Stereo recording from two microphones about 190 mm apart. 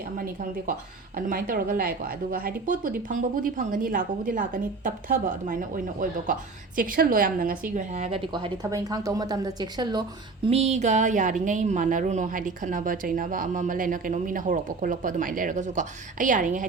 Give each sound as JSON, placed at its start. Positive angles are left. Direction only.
{"t": 1.3, "sound": "a woman's voice", "side_deg": -50}
{"t": 8.3, "sound": "speech", "side_deg": -20}
{"t": 10.4, "sound": "a woman's voice", "side_deg": -35}